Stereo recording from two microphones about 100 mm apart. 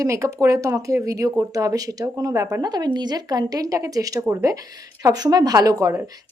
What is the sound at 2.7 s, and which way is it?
Speech, 45° right (ahead or behind).